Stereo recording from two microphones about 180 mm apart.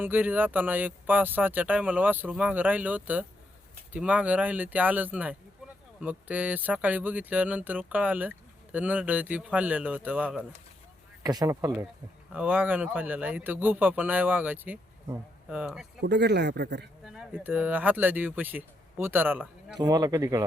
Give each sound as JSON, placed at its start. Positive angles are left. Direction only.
{"t": 0.0, "sound": "speech", "side_deg": -10}
{"t": 11.2, "sound": "speech", "side_deg": -20}
{"t": 16.0, "sound": "speech", "side_deg": -70}
{"t": 17.0, "sound": "speech", "side_deg": -5}
{"t": 19.8, "sound": "speech", "side_deg": -20}